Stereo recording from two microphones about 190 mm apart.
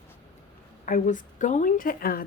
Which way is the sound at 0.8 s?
45° left (ahead or behind).